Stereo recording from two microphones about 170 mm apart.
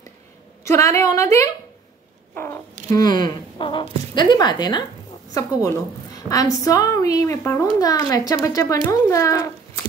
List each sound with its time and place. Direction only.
0.7 s a woman's voice: 15° left (ahead or behind)